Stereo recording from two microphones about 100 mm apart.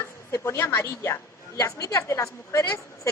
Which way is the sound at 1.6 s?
35° left (ahead or behind).